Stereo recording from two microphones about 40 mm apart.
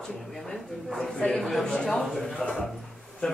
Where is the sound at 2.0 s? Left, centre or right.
Centre.